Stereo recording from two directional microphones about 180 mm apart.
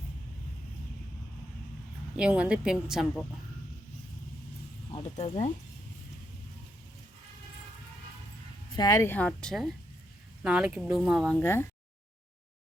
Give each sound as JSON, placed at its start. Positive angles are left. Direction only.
{"t": 2.1, "sound": "speech", "side_deg": -5}
{"t": 4.9, "sound": "speech", "side_deg": 30}
{"t": 8.7, "sound": "a woman's voice", "side_deg": 20}
{"t": 11.3, "sound": "a woman's voice", "side_deg": 10}